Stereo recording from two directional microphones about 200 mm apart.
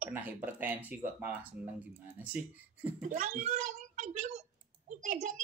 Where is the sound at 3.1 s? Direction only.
35° right (ahead or behind).